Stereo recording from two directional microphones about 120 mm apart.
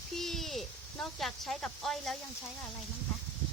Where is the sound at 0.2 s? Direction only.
Centre (ahead or behind).